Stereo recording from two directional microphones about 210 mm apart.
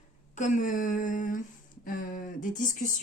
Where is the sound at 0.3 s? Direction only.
35° left (ahead or behind).